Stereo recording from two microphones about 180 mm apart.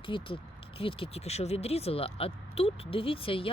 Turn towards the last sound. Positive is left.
turn(degrees=30)  # may be behind; listen again after turning